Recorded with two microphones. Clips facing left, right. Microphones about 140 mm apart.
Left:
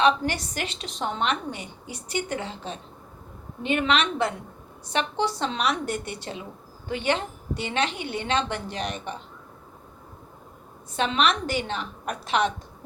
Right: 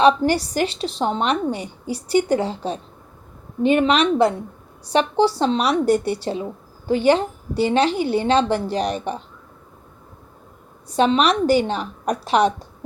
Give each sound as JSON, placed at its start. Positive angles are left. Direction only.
{"t": 0.0, "sound": "speech", "side_deg": -35}
{"t": 10.9, "sound": "speech", "side_deg": -35}